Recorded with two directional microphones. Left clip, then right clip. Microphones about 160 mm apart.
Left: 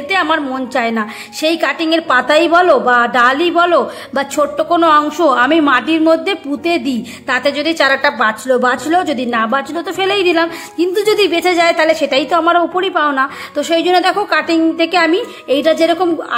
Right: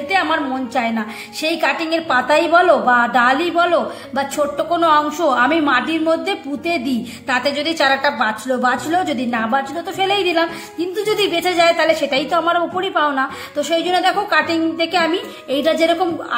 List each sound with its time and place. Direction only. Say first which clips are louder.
0.1 s a woman's voice: left 3 dB; 45° left (ahead or behind)